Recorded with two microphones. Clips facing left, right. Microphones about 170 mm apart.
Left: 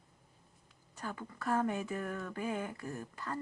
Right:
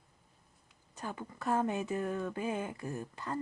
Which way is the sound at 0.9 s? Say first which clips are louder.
Right 1 dB; 20° right (ahead or behind).